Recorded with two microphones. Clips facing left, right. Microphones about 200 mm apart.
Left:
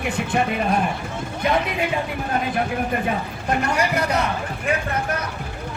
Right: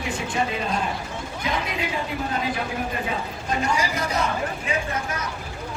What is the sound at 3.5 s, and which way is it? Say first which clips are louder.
Speech: left 3 dB; 60° left (ahead or behind).